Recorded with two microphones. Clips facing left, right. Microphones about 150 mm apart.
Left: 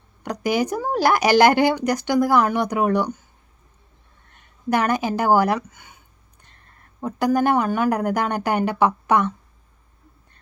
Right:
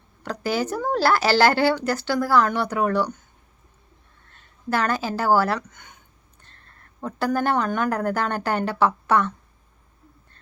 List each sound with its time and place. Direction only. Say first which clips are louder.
0.2 s speech: left 3 dB; 15° left (ahead or behind)
4.3 s speech: left 4 dB; 15° left (ahead or behind)
7.0 s speech: left 4 dB; 10° left (ahead or behind)